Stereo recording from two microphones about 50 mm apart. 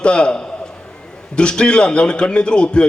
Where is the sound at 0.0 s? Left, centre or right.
Centre.